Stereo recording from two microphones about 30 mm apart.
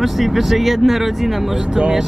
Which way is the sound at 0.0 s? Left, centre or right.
Centre.